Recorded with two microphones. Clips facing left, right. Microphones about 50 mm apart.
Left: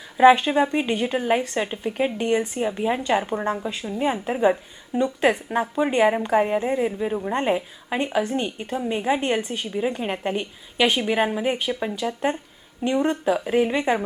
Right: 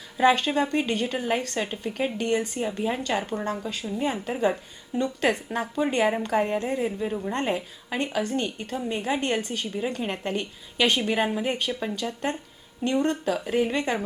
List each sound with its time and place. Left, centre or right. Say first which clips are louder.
0.2 s a woman's voice: left 6 dB; centre